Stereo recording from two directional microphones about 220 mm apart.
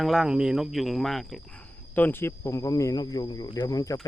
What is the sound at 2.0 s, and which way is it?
Cricket, 10° left (ahead or behind).